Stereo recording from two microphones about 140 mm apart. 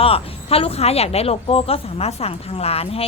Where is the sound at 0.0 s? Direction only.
45° left (ahead or behind).